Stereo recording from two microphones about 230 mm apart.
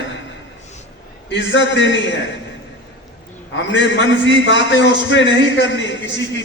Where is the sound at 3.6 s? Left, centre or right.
Left.